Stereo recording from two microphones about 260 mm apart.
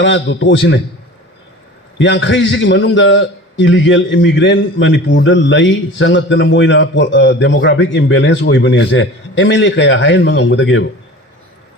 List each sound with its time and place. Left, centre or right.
0.0 s a man's voice: left
2.0 s a man's voice: left